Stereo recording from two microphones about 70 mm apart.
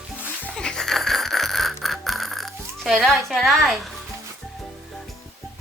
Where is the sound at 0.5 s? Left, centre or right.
Centre.